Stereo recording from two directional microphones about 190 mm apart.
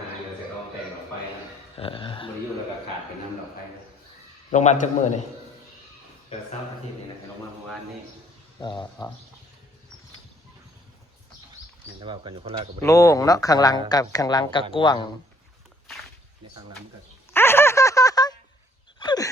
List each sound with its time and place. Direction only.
1.7 s music: 30° left (ahead or behind)
4.5 s a man's voice: 40° left (ahead or behind)
8.6 s speech: 25° left (ahead or behind)
11.9 s speech: 25° right (ahead or behind)
12.8 s speech: 15° left (ahead or behind)
17.3 s a sound: 10° left (ahead or behind)